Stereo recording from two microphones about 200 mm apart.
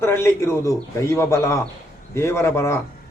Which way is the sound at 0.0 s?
10° left (ahead or behind).